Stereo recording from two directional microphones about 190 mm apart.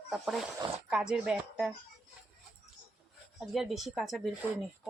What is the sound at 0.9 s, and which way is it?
Speech, 5° right (ahead or behind).